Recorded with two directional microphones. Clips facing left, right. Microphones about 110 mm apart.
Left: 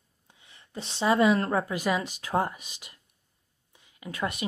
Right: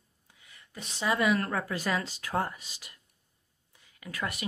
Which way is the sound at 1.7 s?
15° left (ahead or behind).